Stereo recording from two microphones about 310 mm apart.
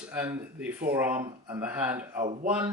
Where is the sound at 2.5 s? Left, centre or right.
Centre.